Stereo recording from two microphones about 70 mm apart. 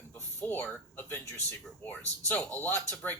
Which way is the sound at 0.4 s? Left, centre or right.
Left.